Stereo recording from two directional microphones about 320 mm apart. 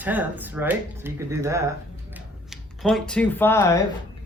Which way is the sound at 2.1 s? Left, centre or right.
Centre.